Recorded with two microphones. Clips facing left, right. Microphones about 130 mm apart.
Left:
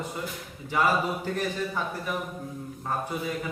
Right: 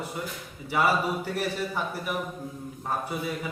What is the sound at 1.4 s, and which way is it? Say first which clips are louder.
Speech: even; 10° right (ahead or behind).